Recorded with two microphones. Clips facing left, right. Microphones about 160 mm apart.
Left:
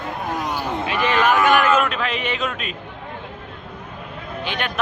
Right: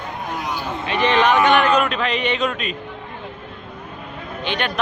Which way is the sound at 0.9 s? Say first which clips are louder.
Right 3 dB; 5° left (ahead or behind).